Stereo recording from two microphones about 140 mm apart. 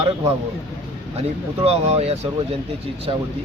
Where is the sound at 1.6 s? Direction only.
45° right (ahead or behind).